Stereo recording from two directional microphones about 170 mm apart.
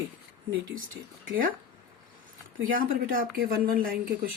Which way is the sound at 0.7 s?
55° right (ahead or behind).